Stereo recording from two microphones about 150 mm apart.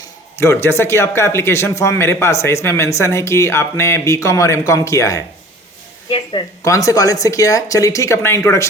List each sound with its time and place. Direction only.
0.3 s a man's voice: 15° left (ahead or behind)
6.1 s a woman's voice: 35° left (ahead or behind)
6.7 s speech: 20° left (ahead or behind)